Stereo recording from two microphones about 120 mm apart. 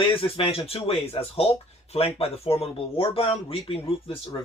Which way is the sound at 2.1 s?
55° left (ahead or behind).